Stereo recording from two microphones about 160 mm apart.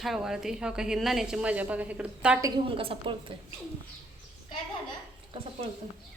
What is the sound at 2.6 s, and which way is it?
Speech, 35° right (ahead or behind).